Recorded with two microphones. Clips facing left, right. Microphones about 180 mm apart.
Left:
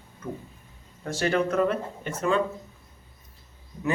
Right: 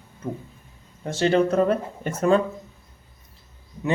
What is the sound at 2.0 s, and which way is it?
Speech, 45° right (ahead or behind).